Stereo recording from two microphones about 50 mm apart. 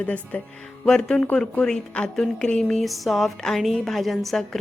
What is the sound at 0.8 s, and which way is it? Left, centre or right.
A woman's voice, centre.